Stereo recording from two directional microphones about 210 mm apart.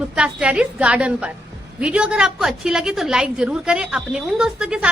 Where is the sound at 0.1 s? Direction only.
5° right (ahead or behind).